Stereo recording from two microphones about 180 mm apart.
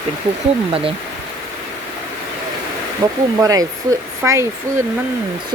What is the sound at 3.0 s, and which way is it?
Speech, 20° right (ahead or behind).